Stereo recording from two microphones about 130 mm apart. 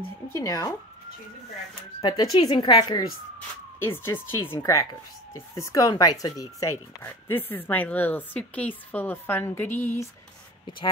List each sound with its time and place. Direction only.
0.3 s speech: 25° left (ahead or behind)
2.0 s speech: 30° left (ahead or behind)
3.3 s speech: 20° left (ahead or behind)